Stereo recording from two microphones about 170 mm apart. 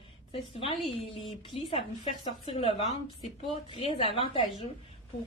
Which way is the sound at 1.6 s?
35° left (ahead or behind).